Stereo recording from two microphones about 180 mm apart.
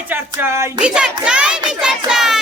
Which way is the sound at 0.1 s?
10° right (ahead or behind).